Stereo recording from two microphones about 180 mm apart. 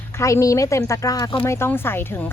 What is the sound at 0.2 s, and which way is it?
Speech, 15° left (ahead or behind).